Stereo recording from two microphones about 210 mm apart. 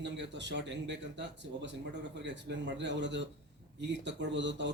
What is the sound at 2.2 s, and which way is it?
Speech, 60° right (ahead or behind).